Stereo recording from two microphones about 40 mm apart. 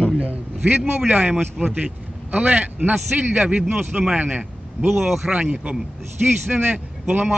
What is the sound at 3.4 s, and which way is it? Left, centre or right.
A man's voice, right.